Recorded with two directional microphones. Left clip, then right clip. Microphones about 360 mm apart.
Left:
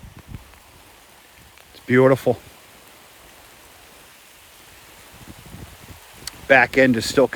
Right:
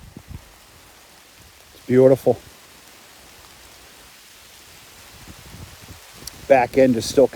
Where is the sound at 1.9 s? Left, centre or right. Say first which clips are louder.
Right 1 dB; left.